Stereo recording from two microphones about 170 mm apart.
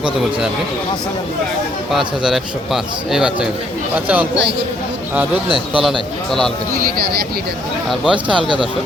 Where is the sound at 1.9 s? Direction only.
Centre (ahead or behind).